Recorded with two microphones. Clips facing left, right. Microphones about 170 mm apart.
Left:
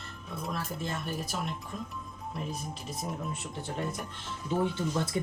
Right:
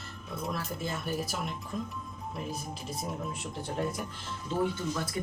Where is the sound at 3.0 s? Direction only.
Centre (ahead or behind).